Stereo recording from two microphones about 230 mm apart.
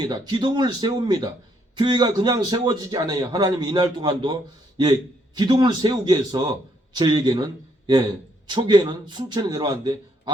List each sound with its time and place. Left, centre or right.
0.0 s a man's voice: centre